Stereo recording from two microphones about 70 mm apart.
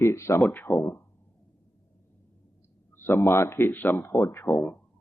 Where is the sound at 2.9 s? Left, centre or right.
Left.